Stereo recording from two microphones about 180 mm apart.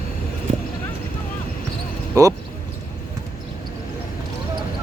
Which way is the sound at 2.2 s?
20° right (ahead or behind).